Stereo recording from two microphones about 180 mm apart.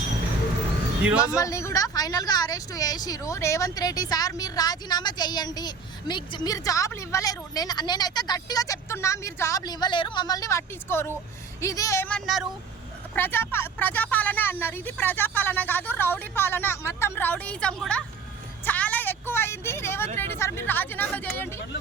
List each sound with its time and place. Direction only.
1.0 s speech: 5° right (ahead or behind)
1.4 s a woman's voice: 15° left (ahead or behind); by 12.5 s centre (ahead or behind)
13.1 s a woman's voice: 10° left (ahead or behind)
18.6 s vehicle: 10° left (ahead or behind)
20.1 s a woman's voice: 10° left (ahead or behind)